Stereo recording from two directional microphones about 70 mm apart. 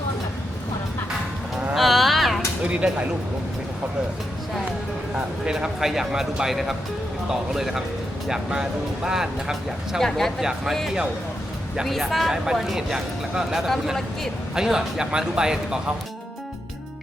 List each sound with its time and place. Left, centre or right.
1.7 s a sound: centre
2.6 s speech: centre
5.5 s speech: centre
10.0 s speech: centre
11.8 s speech: centre